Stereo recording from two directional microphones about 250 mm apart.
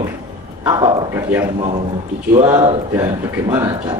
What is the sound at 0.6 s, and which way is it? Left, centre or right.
A man's voice, centre.